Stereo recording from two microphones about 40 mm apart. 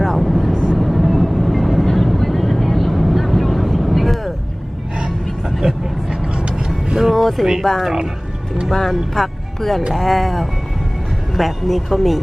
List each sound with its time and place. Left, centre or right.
0.0 s vehicle: centre
5.5 s vehicle: centre
6.7 s vehicle: centre
7.2 s a sound: centre
7.6 s speech: centre
8.9 s speech: centre